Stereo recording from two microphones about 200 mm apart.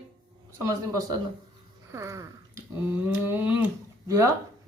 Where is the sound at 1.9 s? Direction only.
15° right (ahead or behind).